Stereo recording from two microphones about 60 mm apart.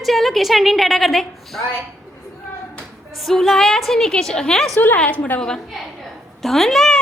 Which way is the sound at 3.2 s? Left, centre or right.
Centre.